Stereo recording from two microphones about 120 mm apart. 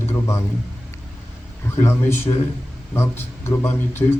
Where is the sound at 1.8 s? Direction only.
20° left (ahead or behind).